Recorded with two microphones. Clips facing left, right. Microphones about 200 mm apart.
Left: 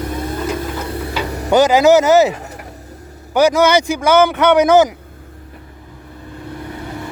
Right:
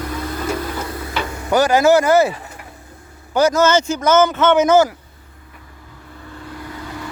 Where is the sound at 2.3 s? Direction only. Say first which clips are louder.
Left 5 dB; 45° left (ahead or behind).